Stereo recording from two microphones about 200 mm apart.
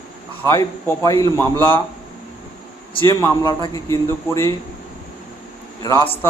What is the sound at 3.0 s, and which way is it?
Speech, 15° left (ahead or behind).